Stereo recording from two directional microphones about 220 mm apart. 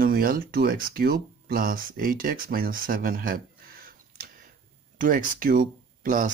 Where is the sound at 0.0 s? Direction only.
40° right (ahead or behind).